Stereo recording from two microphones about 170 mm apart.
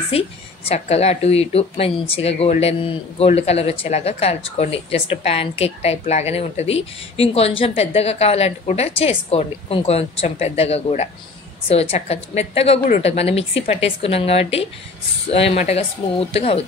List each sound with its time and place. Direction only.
0.1 s speech: 35° left (ahead or behind)